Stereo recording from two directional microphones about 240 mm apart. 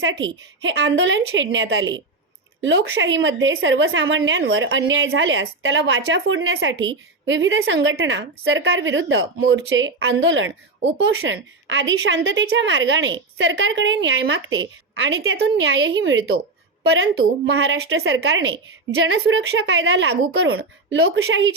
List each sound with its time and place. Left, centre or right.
0.0 s a woman's voice: right